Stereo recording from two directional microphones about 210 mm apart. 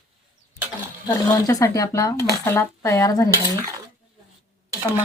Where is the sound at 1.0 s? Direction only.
15° left (ahead or behind).